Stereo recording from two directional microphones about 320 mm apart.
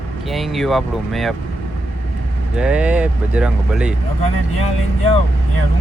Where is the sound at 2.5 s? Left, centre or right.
Centre.